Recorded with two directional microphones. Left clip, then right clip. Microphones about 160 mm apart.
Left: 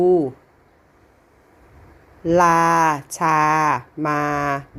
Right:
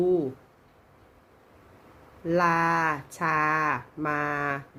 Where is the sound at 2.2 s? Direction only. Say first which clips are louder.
Left 9 dB; 45° left (ahead or behind).